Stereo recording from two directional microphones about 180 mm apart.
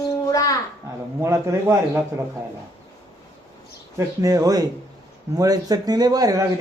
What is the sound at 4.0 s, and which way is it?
A man's voice, 20° right (ahead or behind).